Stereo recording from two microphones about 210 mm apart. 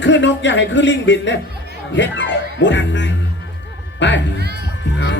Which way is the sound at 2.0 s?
60° left (ahead or behind).